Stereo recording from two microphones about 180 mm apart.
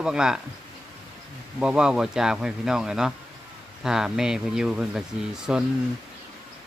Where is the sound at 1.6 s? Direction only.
5° right (ahead or behind).